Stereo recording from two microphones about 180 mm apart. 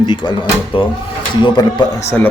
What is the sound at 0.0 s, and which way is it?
Speech, 25° left (ahead or behind).